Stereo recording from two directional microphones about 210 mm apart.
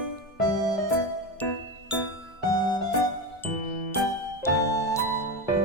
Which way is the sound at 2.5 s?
20° left (ahead or behind).